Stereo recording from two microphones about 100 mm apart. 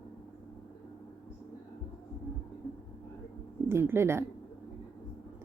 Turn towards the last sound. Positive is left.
turn(degrees=-25)  # may be behind; listen again after turning